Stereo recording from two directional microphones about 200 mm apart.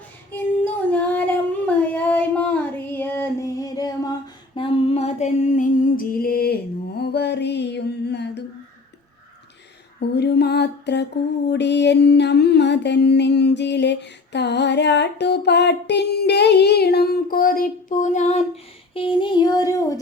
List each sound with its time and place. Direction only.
0.3 s singing: 10° left (ahead or behind)
4.5 s music: 25° left (ahead or behind); by 6.6 s 50° left (ahead or behind)
7.0 s mantra: 55° left (ahead or behind)
10.2 s music: 55° left (ahead or behind); by 20.0 s 15° left (ahead or behind)